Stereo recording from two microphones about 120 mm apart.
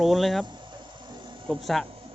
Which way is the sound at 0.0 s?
Centre (ahead or behind).